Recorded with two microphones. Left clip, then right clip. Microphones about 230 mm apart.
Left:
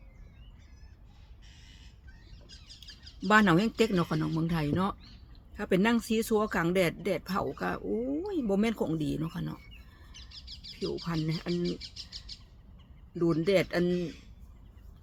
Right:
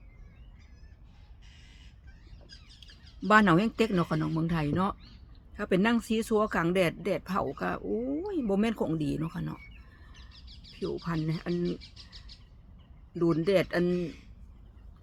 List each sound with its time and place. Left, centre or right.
2.8 s duck: centre
3.2 s speech: centre
10.1 s bird: left
11.0 s speech: centre
11.8 s a sound: left
13.1 s speech: centre